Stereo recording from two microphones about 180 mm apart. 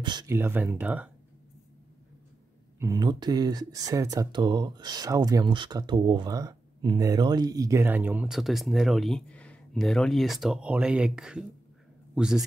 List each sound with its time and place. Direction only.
0.0 s speech: 25° right (ahead or behind); by 1.1 s 5° right (ahead or behind)
2.8 s a man's voice: 20° right (ahead or behind); by 12.4 s 5° right (ahead or behind)